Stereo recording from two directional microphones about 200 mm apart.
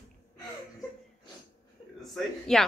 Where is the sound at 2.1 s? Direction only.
Centre (ahead or behind).